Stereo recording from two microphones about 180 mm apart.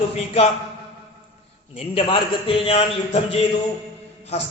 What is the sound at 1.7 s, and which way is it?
A man's voice, 30° left (ahead or behind).